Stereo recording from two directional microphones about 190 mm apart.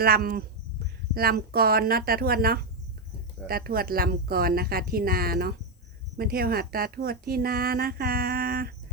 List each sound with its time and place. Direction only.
0.0 s a woman's voice: 50° right (ahead or behind)